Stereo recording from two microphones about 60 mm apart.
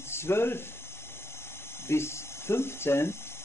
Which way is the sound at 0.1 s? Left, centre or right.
Left.